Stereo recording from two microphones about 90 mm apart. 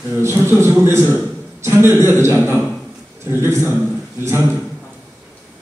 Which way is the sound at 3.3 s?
25° right (ahead or behind).